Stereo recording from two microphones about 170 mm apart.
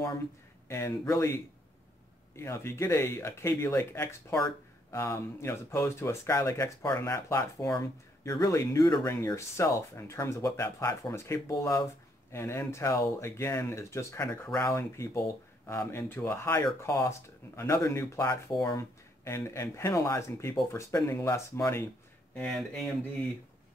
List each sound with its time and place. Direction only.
0.7 s speech: 15° left (ahead or behind)
22.3 s speech: 5° left (ahead or behind)